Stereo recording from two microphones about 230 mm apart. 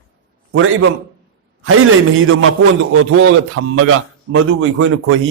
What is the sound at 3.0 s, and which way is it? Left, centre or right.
A man's voice, right.